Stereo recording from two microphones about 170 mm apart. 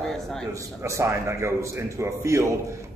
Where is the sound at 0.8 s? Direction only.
15° right (ahead or behind).